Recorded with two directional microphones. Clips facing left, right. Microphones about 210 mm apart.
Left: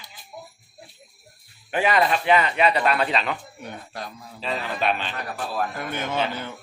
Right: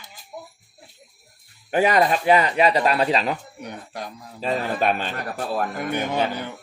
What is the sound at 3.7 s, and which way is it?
Speech, 15° right (ahead or behind).